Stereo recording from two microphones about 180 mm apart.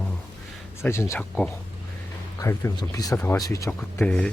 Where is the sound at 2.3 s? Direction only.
15° left (ahead or behind).